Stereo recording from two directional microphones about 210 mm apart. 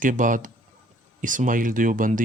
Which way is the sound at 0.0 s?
40° right (ahead or behind).